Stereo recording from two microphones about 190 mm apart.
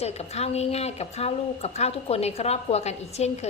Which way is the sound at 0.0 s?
35° left (ahead or behind).